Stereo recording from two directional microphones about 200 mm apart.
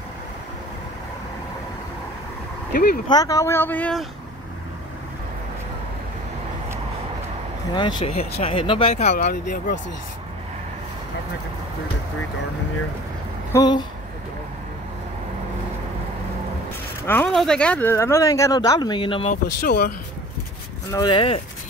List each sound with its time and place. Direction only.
2.7 s speech: 50° left (ahead or behind)
3.1 s speech: 20° left (ahead or behind)
7.7 s speech: 25° left (ahead or behind)
13.5 s speech: 20° left (ahead or behind)
17.0 s speech: 10° left (ahead or behind); by 19.3 s 25° left (ahead or behind)
19.6 s speech: 50° left (ahead or behind)
20.9 s speech: 20° left (ahead or behind)